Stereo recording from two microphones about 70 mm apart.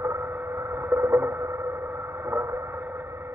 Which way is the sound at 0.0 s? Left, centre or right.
Right.